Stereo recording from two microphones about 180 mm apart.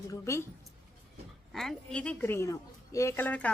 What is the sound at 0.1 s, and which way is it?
Speech, 15° left (ahead or behind).